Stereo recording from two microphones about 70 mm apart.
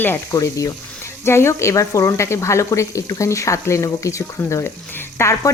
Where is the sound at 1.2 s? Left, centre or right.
Left.